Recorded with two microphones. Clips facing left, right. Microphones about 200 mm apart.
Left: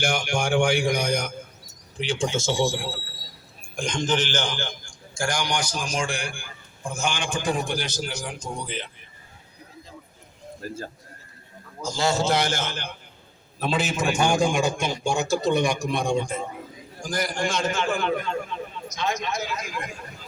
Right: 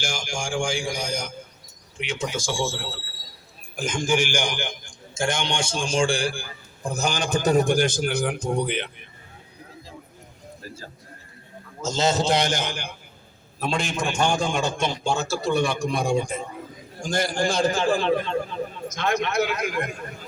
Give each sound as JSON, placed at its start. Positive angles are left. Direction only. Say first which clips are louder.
{"t": 0.0, "sound": "speech", "louder": "left 6 dB", "side_deg": 60}
{"t": 2.0, "sound": "speech", "louder": "left 3 dB", "side_deg": 30}
{"t": 3.6, "sound": "a man's voice", "louder": "even", "side_deg": -5}
{"t": 11.8, "sound": "a man's voice", "louder": "right 1 dB", "side_deg": -25}
{"t": 13.6, "sound": "a man's voice", "louder": "left 1 dB", "side_deg": 5}
{"t": 15.9, "sound": "a man's voice", "louder": "right 1 dB", "side_deg": -5}
{"t": 17.0, "sound": "a man's voice", "louder": "right 3 dB", "side_deg": -25}
{"t": 18.9, "sound": "a man's voice", "louder": "right 3 dB", "side_deg": -55}